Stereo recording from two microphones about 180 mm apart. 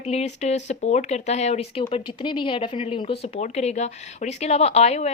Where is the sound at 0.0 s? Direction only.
35° left (ahead or behind).